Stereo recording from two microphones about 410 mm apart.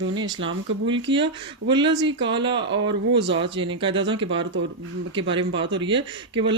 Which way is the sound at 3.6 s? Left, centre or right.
Centre.